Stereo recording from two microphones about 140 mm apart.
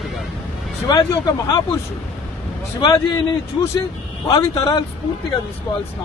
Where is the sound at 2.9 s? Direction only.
30° left (ahead or behind).